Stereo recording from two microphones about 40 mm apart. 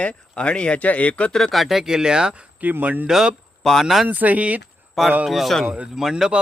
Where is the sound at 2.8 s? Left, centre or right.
Right.